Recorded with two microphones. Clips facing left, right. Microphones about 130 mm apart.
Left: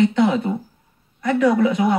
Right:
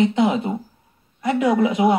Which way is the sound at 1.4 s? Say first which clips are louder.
Even; 15° right (ahead or behind).